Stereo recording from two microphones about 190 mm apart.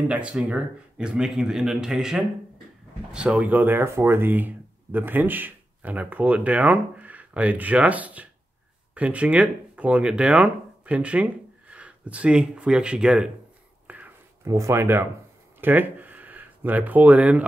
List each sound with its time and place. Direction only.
0.1 s speech: 5° right (ahead or behind)
13.8 s a sound: 10° right (ahead or behind)
15.6 s speech: 10° right (ahead or behind)